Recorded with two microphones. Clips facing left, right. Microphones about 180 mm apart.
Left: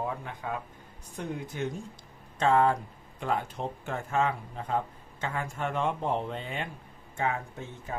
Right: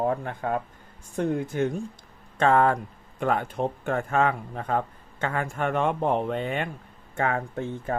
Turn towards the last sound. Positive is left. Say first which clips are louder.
# right 10 dB
turn(degrees=-60)  # may be behind; listen again after turning